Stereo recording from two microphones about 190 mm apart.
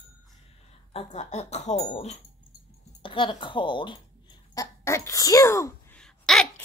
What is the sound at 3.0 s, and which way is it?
Speech, 25° left (ahead or behind).